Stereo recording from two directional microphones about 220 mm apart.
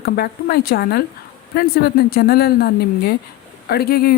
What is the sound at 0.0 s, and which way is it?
Speech, 45° left (ahead or behind).